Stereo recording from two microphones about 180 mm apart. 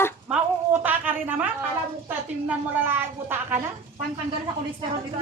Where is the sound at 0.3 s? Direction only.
10° right (ahead or behind).